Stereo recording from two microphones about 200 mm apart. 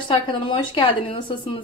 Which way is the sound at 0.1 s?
25° left (ahead or behind).